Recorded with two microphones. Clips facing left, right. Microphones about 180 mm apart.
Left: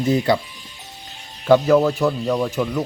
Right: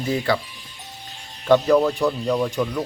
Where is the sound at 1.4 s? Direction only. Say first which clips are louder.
Left 2 dB; 10° left (ahead or behind).